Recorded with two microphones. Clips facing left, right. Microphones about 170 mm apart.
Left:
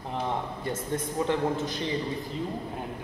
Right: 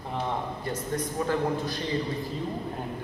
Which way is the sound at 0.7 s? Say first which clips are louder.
Even; 25° left (ahead or behind).